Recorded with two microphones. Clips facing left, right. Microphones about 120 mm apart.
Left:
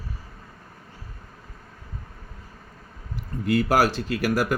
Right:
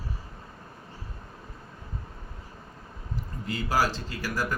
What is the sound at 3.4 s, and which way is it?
Speech, 65° left (ahead or behind).